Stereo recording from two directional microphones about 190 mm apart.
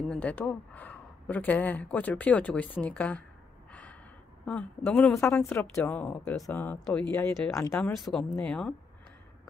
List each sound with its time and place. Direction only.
0.1 s speech: 5° left (ahead or behind)
4.5 s speech: 10° left (ahead or behind)
7.7 s speech: 5° left (ahead or behind)